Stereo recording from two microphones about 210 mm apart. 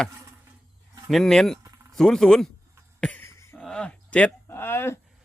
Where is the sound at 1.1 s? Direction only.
Centre (ahead or behind).